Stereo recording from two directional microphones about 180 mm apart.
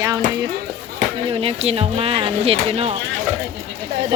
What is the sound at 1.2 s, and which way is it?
Speech, 30° right (ahead or behind).